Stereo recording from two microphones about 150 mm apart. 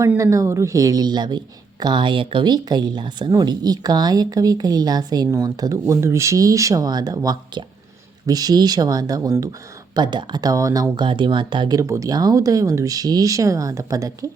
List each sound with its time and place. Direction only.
0.2 s a woman's voice: 20° right (ahead or behind)